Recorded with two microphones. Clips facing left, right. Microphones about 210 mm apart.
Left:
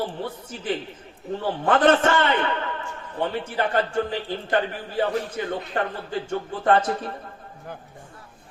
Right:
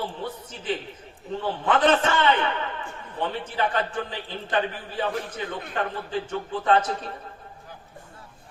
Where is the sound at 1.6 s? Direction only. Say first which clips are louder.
Left 3 dB; 50° left (ahead or behind).